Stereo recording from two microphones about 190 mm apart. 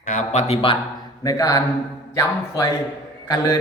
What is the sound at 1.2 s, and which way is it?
Speech, 15° left (ahead or behind).